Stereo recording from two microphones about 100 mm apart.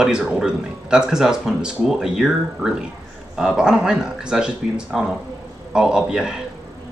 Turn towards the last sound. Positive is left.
turn(degrees=-5)  # may be behind; listen again after turning